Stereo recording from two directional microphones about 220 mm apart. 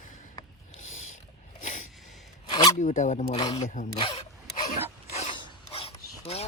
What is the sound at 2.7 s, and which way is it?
Speech, 35° left (ahead or behind).